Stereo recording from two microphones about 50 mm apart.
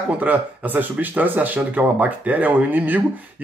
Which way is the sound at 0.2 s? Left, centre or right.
Right.